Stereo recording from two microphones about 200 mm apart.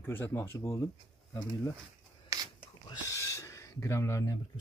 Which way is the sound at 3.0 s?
15° left (ahead or behind).